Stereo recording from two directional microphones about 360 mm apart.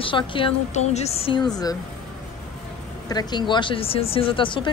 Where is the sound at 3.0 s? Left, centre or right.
Centre.